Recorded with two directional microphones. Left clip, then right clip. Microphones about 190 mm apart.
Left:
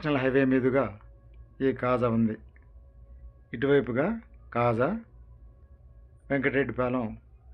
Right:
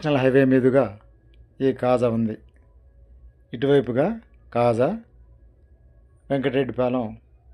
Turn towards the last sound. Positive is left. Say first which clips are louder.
# right 6 dB
turn(degrees=-25)  # may be behind; listen again after turning